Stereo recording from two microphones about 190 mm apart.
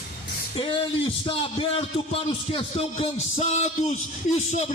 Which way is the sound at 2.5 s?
30° left (ahead or behind).